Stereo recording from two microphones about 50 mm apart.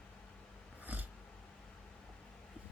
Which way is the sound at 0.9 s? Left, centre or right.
Right.